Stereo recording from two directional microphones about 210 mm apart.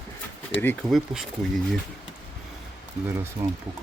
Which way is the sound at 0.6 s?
10° left (ahead or behind).